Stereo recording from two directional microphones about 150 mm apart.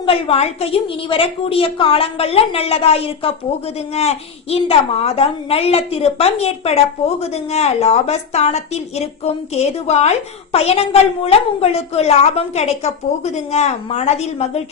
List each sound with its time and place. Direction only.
0.0 s a woman's voice: 40° left (ahead or behind)